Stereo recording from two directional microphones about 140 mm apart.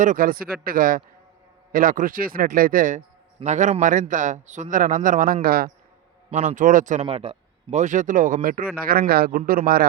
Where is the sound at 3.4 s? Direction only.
60° right (ahead or behind); by 5.7 s 90° right.